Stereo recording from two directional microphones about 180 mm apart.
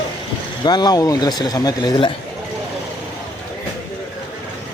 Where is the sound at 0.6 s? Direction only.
25° left (ahead or behind).